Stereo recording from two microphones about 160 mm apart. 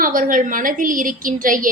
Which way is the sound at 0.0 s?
60° right (ahead or behind).